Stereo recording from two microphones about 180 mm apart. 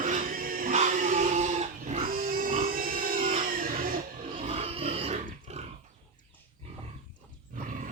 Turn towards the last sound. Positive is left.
turn(degrees=-50)  # may be behind; listen again after turning